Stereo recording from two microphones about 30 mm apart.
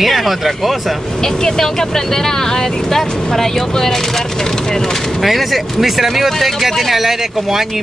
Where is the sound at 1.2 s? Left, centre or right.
Centre.